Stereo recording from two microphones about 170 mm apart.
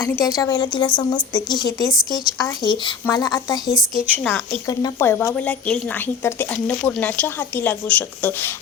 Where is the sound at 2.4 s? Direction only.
20° left (ahead or behind).